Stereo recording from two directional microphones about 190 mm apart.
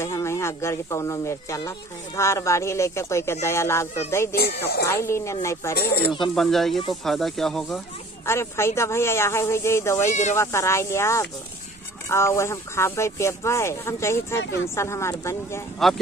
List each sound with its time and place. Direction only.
0.0 s speech: 15° left (ahead or behind)
4.4 s speech: 55° left (ahead or behind)
4.8 s speech: 15° left (ahead or behind)
5.8 s speech: 55° left (ahead or behind)
6.3 s speech: centre (ahead or behind)
8.3 s speech: 15° left (ahead or behind)